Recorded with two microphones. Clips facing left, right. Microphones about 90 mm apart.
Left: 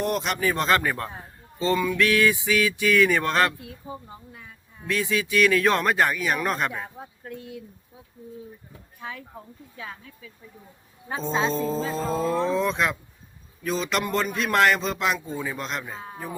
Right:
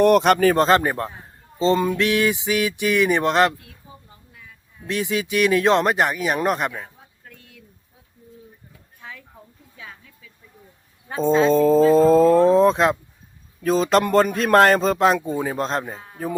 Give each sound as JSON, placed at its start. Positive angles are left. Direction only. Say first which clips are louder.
{"t": 0.0, "sound": "speech", "louder": "right 11 dB", "side_deg": -65}
{"t": 0.5, "sound": "speech", "louder": "right 6 dB", "side_deg": -35}
{"t": 1.5, "sound": "mantra", "louder": "right 5 dB", "side_deg": -25}
{"t": 2.0, "sound": "speech", "louder": "right 1 dB", "side_deg": -25}
{"t": 4.9, "sound": "speech", "louder": "right 2 dB", "side_deg": -25}
{"t": 7.0, "sound": "a sound", "louder": "left 11 dB", "side_deg": 40}
{"t": 9.0, "sound": "a sound", "louder": "left 4 dB", "side_deg": 10}
{"t": 11.5, "sound": "a man's voice", "louder": "right 13 dB", "side_deg": -50}